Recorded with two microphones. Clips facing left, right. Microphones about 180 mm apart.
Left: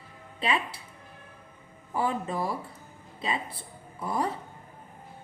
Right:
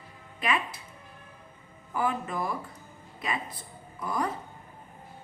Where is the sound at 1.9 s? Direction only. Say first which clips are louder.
Left 1 dB; 30° left (ahead or behind).